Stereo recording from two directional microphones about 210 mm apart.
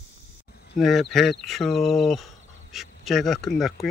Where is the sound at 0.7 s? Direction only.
Centre (ahead or behind).